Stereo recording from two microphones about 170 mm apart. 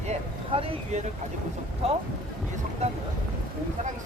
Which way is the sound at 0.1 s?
35° right (ahead or behind).